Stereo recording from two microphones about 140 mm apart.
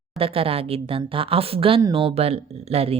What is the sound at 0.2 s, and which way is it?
Speech, 40° right (ahead or behind).